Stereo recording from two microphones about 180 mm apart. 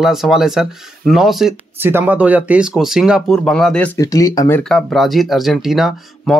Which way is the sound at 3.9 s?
20° left (ahead or behind).